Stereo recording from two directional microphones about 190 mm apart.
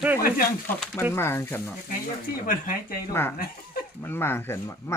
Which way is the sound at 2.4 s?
50° left (ahead or behind).